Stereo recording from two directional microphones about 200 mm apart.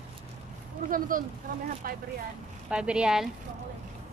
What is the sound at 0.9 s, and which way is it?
Speech, 45° right (ahead or behind).